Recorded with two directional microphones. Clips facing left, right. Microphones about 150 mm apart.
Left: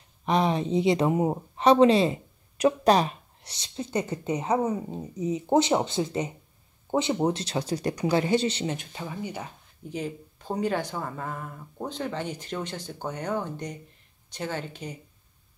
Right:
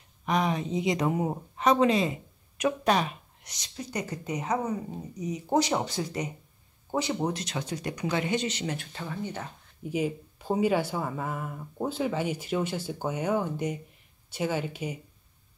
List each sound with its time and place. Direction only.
0.2 s a woman's voice: 30° left (ahead or behind)
8.7 s speech: 15° left (ahead or behind)
9.8 s speech: 10° right (ahead or behind)